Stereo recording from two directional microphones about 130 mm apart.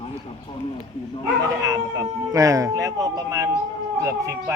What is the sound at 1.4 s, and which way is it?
Speech, 25° right (ahead or behind).